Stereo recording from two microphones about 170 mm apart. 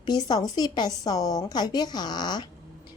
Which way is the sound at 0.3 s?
20° left (ahead or behind).